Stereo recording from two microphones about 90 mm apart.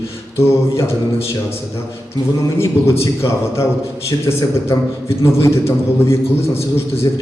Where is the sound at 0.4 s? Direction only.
30° left (ahead or behind).